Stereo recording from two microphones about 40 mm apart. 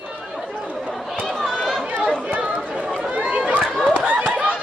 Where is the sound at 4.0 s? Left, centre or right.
Right.